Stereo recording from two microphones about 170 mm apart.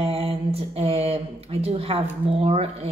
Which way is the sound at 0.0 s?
35° right (ahead or behind).